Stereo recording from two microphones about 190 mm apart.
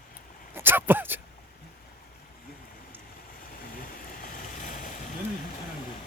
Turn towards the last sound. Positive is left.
turn(degrees=40)  # may be behind; listen again after turning